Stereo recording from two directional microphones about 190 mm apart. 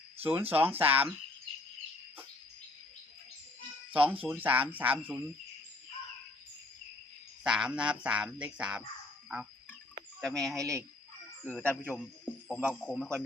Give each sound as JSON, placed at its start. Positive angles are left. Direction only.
{"t": 0.2, "sound": "speech", "side_deg": -10}
{"t": 3.9, "sound": "speech", "side_deg": -10}
{"t": 7.4, "sound": "frog", "side_deg": -5}
{"t": 10.2, "sound": "speech", "side_deg": 5}
{"t": 10.6, "sound": "speech", "side_deg": -15}
{"t": 11.4, "sound": "speech", "side_deg": 10}
{"t": 12.8, "sound": "frog", "side_deg": 5}